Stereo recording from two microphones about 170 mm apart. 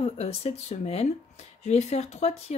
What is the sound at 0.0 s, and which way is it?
Speech, 40° left (ahead or behind).